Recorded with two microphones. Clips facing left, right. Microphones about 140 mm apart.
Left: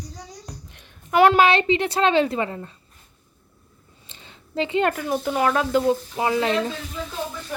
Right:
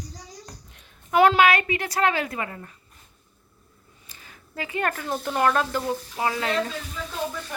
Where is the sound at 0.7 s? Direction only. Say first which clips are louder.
Left 1 dB; 75° left (ahead or behind).